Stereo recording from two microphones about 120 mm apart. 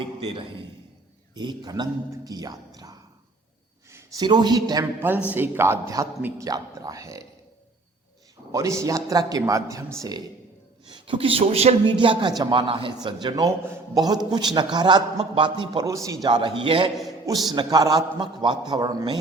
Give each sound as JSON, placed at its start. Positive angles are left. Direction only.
{"t": 0.2, "sound": "a man's voice", "side_deg": -45}
{"t": 3.8, "sound": "a sound", "side_deg": -25}
{"t": 4.2, "sound": "a man's voice", "side_deg": -35}
{"t": 4.9, "sound": "a woman's voice", "side_deg": -15}
{"t": 8.5, "sound": "a man's voice", "side_deg": -25}
{"t": 10.9, "sound": "a man's voice", "side_deg": -45}
{"t": 11.9, "sound": "a man's voice", "side_deg": -40}
{"t": 15.9, "sound": "a man's voice", "side_deg": -25}
{"t": 16.2, "sound": "a man's voice", "side_deg": -40}
{"t": 17.5, "sound": "a man's voice", "side_deg": -35}